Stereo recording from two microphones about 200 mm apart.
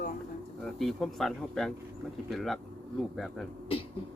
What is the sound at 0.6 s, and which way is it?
A man's voice, centre (ahead or behind).